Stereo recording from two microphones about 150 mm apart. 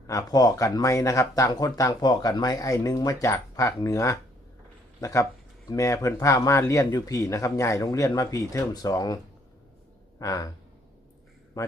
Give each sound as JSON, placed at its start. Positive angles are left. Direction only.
{"t": 0.1, "sound": "speech", "side_deg": 25}
{"t": 11.6, "sound": "speech", "side_deg": 25}